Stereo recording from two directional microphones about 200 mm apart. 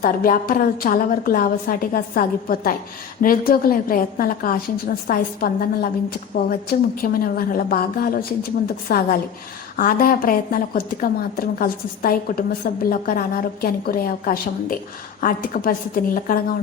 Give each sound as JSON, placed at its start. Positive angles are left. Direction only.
{"t": 0.0, "sound": "a woman's voice", "side_deg": 45}